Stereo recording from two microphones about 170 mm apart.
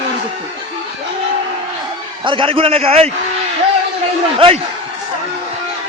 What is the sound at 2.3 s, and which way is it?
Speech, 30° right (ahead or behind).